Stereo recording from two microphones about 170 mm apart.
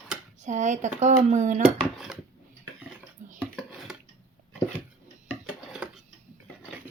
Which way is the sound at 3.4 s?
Centre (ahead or behind).